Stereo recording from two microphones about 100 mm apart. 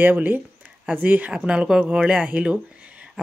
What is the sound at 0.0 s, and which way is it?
Speech, 20° right (ahead or behind).